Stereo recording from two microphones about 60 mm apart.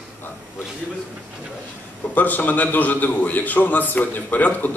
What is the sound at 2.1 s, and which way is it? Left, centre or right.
A man's voice, left.